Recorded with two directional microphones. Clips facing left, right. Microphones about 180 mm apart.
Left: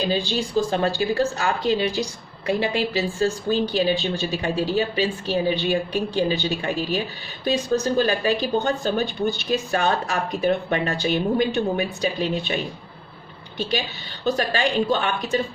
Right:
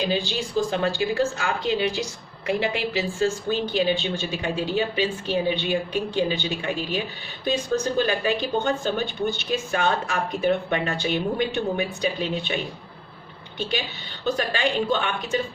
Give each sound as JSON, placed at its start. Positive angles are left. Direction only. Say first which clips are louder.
{"t": 0.0, "sound": "a woman's voice", "louder": "left 2 dB", "side_deg": 35}
{"t": 14.3, "sound": "a woman's voice", "louder": "left 2 dB", "side_deg": 40}